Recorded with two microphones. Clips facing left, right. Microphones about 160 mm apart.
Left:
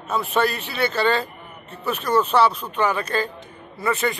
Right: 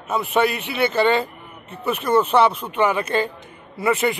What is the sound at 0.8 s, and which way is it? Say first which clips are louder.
Speech: right 3 dB; 20° right (ahead or behind).